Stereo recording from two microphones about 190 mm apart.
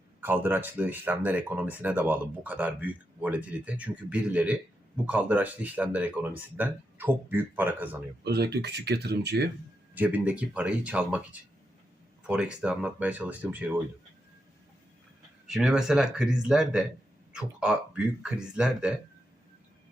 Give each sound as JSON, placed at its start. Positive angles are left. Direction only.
{"t": 0.2, "sound": "speech", "side_deg": -10}
{"t": 8.2, "sound": "speech", "side_deg": -60}
{"t": 9.9, "sound": "speech", "side_deg": -10}
{"t": 15.4, "sound": "speech", "side_deg": -5}